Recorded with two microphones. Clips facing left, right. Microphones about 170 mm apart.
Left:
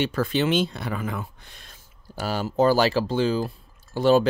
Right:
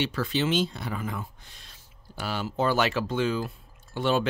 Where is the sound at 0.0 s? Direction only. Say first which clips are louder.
Left 4 dB; 50° left (ahead or behind).